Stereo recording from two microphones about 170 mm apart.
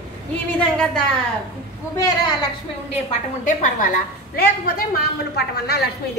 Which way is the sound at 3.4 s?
50° left (ahead or behind).